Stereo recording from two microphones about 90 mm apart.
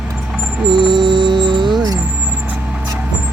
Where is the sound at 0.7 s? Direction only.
60° right (ahead or behind).